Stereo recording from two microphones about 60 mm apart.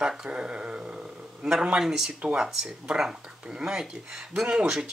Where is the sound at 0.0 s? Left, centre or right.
Centre.